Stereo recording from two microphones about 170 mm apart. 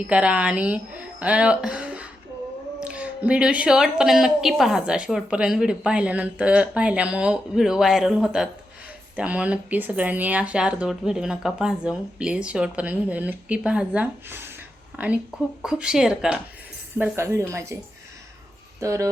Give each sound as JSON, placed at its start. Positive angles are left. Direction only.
{"t": 0.1, "sound": "a woman's voice", "side_deg": -5}
{"t": 17.0, "sound": "speech", "side_deg": -15}
{"t": 18.8, "sound": "speech", "side_deg": -20}